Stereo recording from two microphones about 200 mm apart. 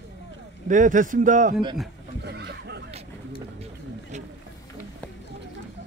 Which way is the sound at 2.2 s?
55° right (ahead or behind).